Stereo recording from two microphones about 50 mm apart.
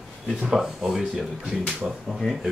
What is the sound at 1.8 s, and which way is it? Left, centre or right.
Speech, right.